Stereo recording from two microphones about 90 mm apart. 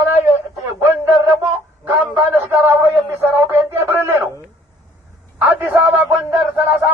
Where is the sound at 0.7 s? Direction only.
30° right (ahead or behind).